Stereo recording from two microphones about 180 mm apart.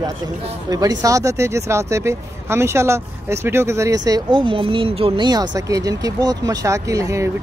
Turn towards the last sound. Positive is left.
turn(degrees=-15)  # may be behind; listen again after turning